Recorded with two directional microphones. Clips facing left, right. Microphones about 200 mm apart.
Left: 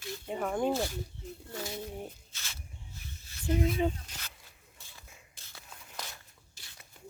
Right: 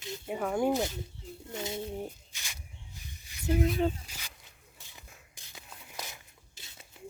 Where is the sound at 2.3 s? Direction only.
15° right (ahead or behind).